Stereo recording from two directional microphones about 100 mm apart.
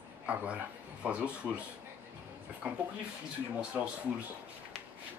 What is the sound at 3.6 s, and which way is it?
Speech, 15° right (ahead or behind).